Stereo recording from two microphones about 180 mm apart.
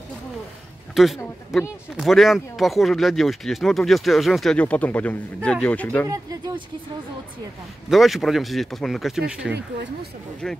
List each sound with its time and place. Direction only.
0.9 s speech: centre (ahead or behind)
6.0 s speech: 20° right (ahead or behind)
7.9 s speech: centre (ahead or behind)